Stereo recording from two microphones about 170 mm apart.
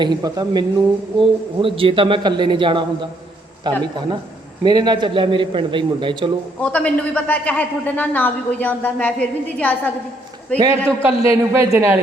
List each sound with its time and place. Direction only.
0.0 s a man's voice: 25° right (ahead or behind)
6.6 s a man's voice: 5° left (ahead or behind)
10.6 s a man's voice: 20° right (ahead or behind)